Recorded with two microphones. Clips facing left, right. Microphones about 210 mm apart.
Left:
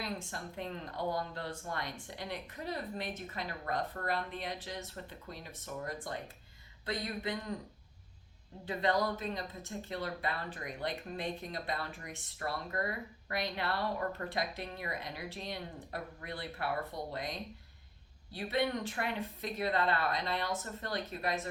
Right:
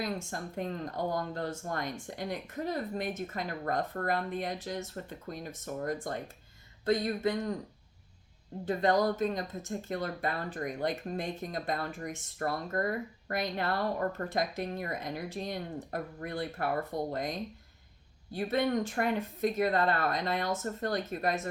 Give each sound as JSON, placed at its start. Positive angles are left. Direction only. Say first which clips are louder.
{"t": 0.0, "sound": "speech", "louder": "right 5 dB", "side_deg": -45}
{"t": 8.6, "sound": "speech", "louder": "right 5 dB", "side_deg": -45}